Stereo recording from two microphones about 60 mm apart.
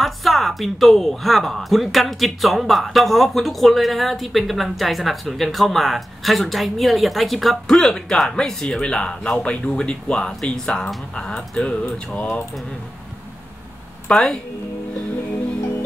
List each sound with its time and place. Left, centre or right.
0.0 s speech: centre
14.1 s speech: centre